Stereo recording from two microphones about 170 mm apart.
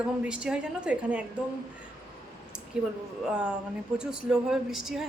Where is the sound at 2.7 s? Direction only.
5° right (ahead or behind).